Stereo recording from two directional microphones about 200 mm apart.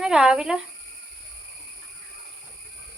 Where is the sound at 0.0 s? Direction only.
5° right (ahead or behind).